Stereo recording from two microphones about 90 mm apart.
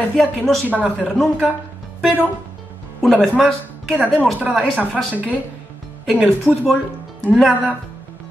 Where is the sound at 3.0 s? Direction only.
Centre (ahead or behind).